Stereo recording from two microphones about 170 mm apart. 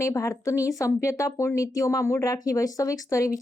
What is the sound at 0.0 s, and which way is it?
Speech, 15° left (ahead or behind).